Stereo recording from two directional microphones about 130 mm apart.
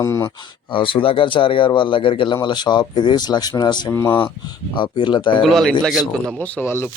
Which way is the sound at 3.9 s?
20° left (ahead or behind).